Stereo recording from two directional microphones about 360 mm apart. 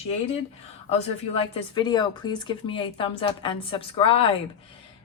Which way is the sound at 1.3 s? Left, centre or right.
Centre.